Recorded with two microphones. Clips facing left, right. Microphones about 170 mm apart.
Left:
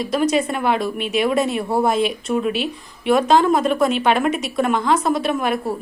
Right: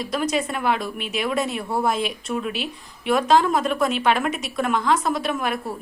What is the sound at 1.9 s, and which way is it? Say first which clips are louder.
A woman's voice: left 5 dB; centre (ahead or behind).